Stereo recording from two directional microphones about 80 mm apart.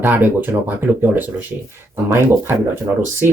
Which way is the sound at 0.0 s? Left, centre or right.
Right.